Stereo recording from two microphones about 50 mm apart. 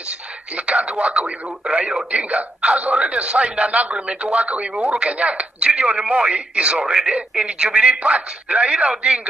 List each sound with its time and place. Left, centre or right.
0.7 s speech: right